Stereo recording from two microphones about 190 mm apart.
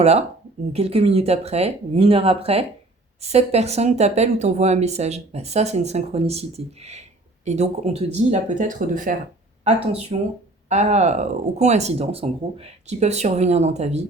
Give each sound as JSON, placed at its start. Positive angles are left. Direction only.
{"t": 0.0, "sound": "speech", "side_deg": -35}
{"t": 9.6, "sound": "speech", "side_deg": -30}